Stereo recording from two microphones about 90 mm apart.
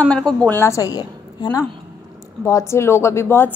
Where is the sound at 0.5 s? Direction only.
30° left (ahead or behind); by 1.7 s 45° left (ahead or behind).